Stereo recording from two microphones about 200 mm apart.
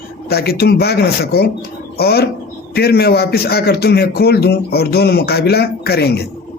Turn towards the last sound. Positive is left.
turn(degrees=55)  # may be behind; listen again after turning